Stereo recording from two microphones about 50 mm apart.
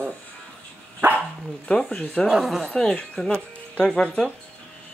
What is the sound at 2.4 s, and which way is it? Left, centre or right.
Speech, centre.